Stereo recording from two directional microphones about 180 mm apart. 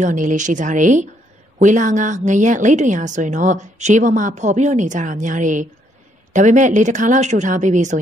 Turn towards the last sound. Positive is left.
turn(degrees=-45)  # may be behind; listen again after turning